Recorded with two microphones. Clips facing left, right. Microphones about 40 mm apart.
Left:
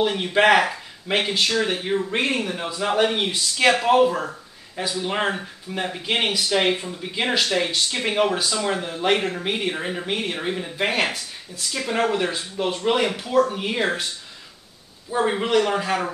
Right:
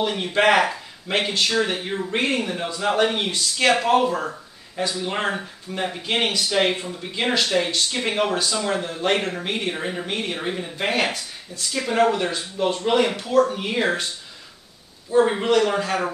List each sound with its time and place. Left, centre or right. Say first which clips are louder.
0.0 s speech: left 1 dB; centre
15.0 s speech: right 4 dB; centre